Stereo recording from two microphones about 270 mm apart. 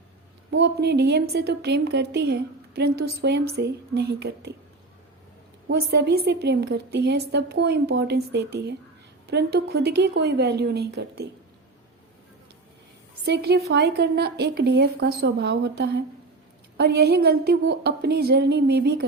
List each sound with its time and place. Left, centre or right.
0.5 s a woman's voice: right
5.6 s a woman's voice: right
13.2 s a woman's voice: right